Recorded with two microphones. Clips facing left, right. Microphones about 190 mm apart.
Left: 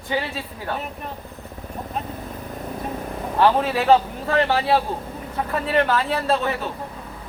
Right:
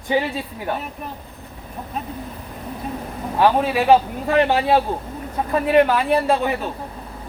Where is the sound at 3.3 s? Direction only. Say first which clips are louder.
Right 1 dB; 10° right (ahead or behind).